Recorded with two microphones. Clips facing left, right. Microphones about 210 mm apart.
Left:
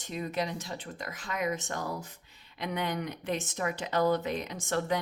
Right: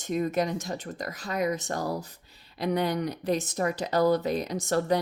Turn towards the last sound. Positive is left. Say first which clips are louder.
# right 5 dB
turn(degrees=-40)  # may be behind; listen again after turning